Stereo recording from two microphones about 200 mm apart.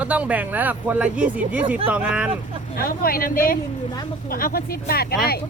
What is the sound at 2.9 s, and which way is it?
Speech, 45° left (ahead or behind).